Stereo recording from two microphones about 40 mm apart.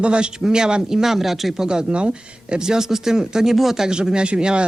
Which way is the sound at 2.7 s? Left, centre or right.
Centre.